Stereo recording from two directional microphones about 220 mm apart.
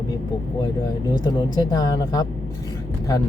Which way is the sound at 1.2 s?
15° left (ahead or behind).